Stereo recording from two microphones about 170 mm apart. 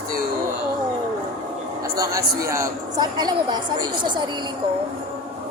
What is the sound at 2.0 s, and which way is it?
A woman's voice, 20° right (ahead or behind).